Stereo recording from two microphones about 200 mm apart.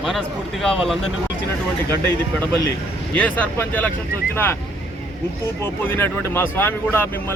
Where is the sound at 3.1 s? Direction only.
10° left (ahead or behind).